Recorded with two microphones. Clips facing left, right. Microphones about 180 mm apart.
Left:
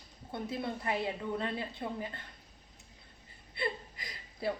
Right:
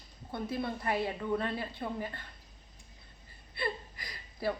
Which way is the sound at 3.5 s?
25° left (ahead or behind).